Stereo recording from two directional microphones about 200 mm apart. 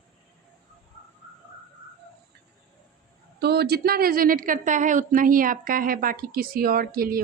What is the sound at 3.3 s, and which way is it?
A woman's voice, 55° right (ahead or behind).